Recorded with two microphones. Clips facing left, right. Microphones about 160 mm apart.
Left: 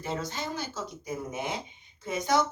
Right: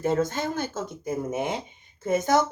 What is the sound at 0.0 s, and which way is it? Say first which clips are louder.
Speech: right 9 dB; 50° right (ahead or behind).